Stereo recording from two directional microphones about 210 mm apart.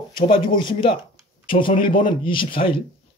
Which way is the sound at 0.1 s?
20° left (ahead or behind).